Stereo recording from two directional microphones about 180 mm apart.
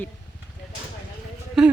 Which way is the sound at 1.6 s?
Centre (ahead or behind).